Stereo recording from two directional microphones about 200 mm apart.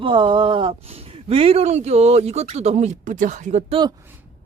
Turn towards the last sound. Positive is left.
turn(degrees=-35)  # may be behind; listen again after turning